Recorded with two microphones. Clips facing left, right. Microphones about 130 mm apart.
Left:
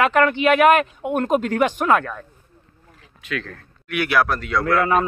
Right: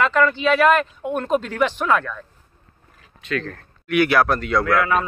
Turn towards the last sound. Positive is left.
turn(degrees=35)  # may be behind; listen again after turning